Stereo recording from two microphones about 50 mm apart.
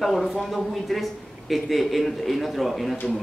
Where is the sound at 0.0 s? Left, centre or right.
Centre.